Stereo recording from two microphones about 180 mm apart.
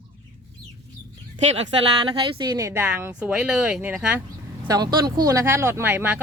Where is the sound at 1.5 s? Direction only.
35° right (ahead or behind); by 4.2 s 10° right (ahead or behind).